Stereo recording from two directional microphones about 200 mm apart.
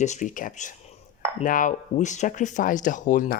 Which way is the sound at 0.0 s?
35° left (ahead or behind).